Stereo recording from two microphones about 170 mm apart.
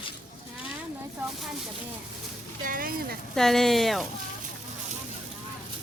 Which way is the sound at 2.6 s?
55° right (ahead or behind).